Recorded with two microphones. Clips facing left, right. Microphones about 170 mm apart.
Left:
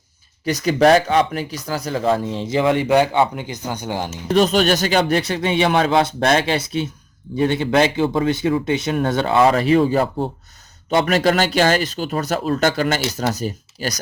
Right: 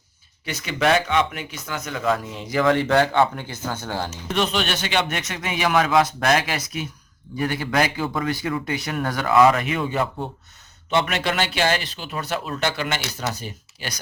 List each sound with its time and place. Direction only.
0.4 s speech: 40° left (ahead or behind); by 4.1 s 15° left (ahead or behind)
4.3 s speech: 40° left (ahead or behind)